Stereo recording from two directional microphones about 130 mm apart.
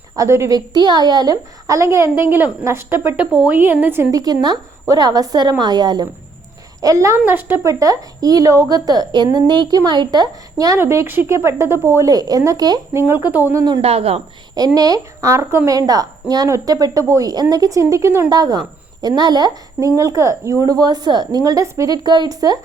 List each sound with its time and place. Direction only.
0.2 s a woman's voice: 25° right (ahead or behind)
4.2 s a woman's voice: 30° right (ahead or behind)
10.8 s speech: 20° right (ahead or behind)
12.9 s speech: 20° right (ahead or behind)
13.8 s a woman's voice: 50° right (ahead or behind)
14.8 s speech: 30° right (ahead or behind)